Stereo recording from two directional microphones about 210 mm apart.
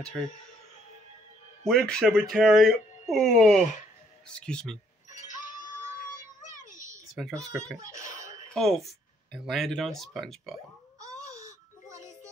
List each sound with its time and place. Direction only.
0.0 s speech: 5° left (ahead or behind)
1.7 s speech: 5° left (ahead or behind)
5.1 s music: 35° left (ahead or behind)
7.2 s speech: centre (ahead or behind)
8.5 s speech: centre (ahead or behind)
11.0 s music: 15° right (ahead or behind)